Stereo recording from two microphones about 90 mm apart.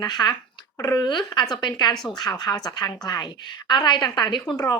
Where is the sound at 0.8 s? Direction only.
35° left (ahead or behind).